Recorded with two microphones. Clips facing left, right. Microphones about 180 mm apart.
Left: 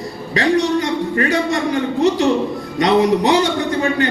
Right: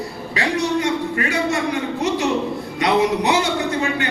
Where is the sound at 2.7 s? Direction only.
35° left (ahead or behind).